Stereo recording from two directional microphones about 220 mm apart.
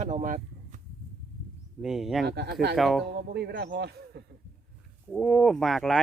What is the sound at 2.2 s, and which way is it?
Speech, 45° right (ahead or behind).